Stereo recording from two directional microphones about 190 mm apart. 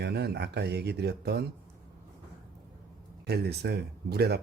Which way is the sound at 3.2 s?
60° right (ahead or behind).